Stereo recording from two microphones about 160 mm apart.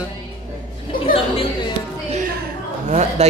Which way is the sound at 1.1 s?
35° left (ahead or behind).